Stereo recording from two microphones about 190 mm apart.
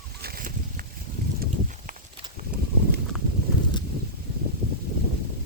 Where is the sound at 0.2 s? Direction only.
50° right (ahead or behind).